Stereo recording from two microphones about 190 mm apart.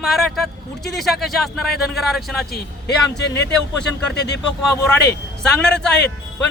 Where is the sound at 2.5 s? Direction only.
60° left (ahead or behind).